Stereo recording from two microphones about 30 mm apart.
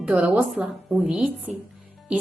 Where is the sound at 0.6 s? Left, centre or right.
Right.